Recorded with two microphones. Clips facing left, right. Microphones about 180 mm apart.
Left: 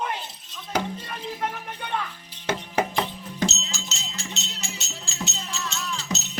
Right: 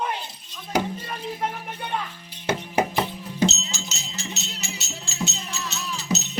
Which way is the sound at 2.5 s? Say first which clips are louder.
Right 2 dB; 10° right (ahead or behind).